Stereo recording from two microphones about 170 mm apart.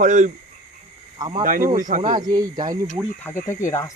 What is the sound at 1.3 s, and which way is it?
Speech, 50° right (ahead or behind).